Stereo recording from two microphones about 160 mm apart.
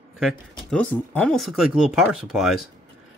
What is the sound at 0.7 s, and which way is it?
Speech, 10° left (ahead or behind).